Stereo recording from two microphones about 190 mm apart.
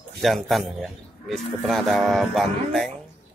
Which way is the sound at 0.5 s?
Centre (ahead or behind).